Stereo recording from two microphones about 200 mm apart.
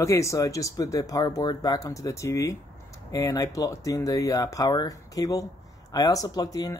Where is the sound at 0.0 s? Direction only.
15° left (ahead or behind).